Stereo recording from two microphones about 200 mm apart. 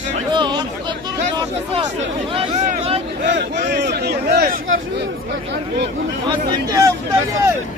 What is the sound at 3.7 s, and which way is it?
Speech, 55° right (ahead or behind).